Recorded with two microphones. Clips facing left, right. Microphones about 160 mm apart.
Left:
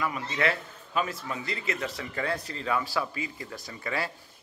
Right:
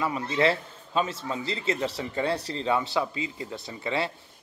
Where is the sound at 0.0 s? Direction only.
30° right (ahead or behind).